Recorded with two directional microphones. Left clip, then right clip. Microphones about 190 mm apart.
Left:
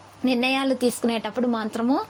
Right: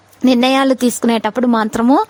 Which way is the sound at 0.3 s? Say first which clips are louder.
Right 10 dB; 45° right (ahead or behind).